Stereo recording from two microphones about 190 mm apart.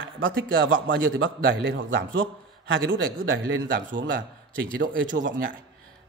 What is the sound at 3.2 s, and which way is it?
Speech, 50° right (ahead or behind).